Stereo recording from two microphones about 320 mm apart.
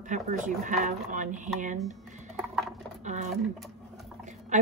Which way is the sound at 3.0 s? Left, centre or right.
Right.